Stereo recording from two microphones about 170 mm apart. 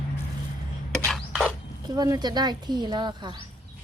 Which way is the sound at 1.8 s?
25° right (ahead or behind).